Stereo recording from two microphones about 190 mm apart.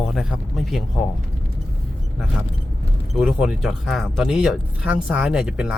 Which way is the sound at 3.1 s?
5° right (ahead or behind).